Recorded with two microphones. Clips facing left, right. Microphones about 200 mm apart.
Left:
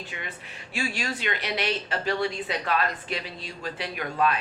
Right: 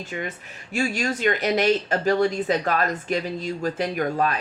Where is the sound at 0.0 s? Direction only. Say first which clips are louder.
Right 7 dB; 45° right (ahead or behind).